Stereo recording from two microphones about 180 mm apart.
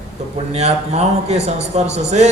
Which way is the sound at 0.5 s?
35° right (ahead or behind).